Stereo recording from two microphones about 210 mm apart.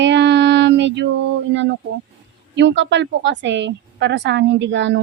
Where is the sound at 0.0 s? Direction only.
55° right (ahead or behind).